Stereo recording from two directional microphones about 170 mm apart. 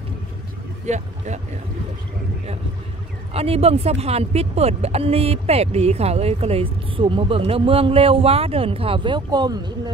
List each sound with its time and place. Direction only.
0.8 s speech: 45° right (ahead or behind)
3.3 s speech: 35° right (ahead or behind)